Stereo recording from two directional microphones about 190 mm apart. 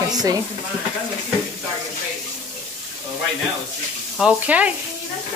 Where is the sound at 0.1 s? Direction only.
20° right (ahead or behind).